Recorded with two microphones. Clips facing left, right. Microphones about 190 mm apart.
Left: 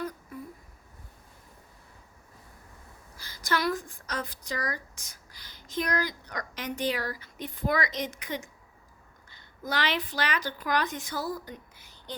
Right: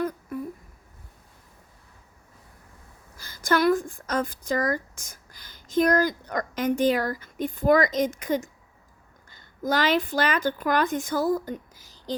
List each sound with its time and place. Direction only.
3.2 s speech: 50° right (ahead or behind)